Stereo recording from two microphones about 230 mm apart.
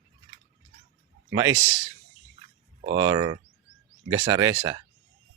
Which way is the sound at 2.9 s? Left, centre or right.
Centre.